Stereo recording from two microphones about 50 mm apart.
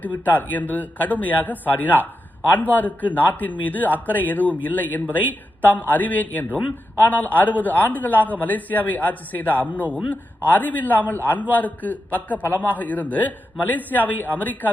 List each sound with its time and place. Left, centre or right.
0.0 s a man's voice: left